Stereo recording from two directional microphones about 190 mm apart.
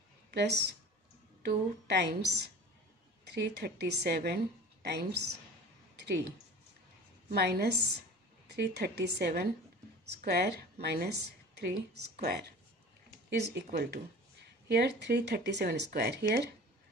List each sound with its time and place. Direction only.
0.3 s speech: 60° right (ahead or behind)
7.2 s a woman's voice: 55° right (ahead or behind)
14.7 s speech: 60° right (ahead or behind)